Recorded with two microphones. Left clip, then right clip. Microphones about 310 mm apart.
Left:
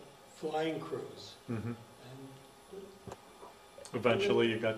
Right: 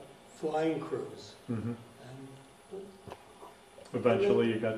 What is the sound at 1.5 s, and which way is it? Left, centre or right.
Speech, centre.